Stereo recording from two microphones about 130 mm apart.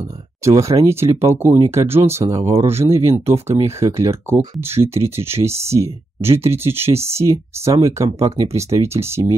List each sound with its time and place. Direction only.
0.6 s speech: 25° right (ahead or behind)